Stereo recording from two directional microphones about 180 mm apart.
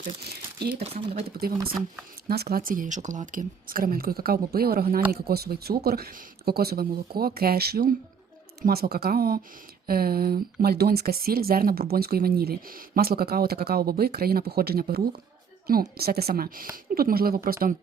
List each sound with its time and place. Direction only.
0.7 s speech: 35° right (ahead or behind)
2.2 s speech: 60° right (ahead or behind)